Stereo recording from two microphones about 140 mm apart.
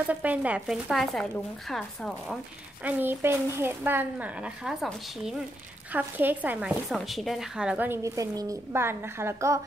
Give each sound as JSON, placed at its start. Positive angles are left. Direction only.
{"t": 0.1, "sound": "speech", "side_deg": -10}
{"t": 2.8, "sound": "a woman's voice", "side_deg": -10}
{"t": 5.9, "sound": "a woman's voice", "side_deg": -10}
{"t": 6.9, "sound": "a woman's voice", "side_deg": 0}